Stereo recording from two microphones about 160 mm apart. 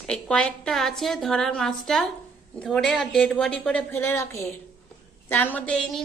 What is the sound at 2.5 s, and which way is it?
A woman's voice, 5° left (ahead or behind).